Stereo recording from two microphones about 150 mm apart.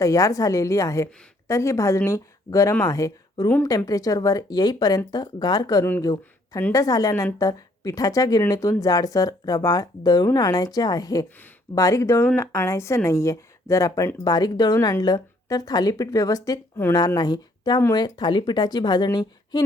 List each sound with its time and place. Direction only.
0.0 s speech: 20° left (ahead or behind)